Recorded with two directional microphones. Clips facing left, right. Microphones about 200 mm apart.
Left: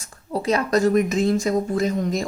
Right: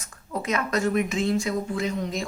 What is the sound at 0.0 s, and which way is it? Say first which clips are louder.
Speech: left 6 dB; 35° left (ahead or behind).